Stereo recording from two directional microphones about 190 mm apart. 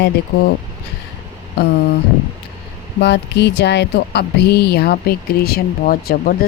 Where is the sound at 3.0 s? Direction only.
65° left (ahead or behind).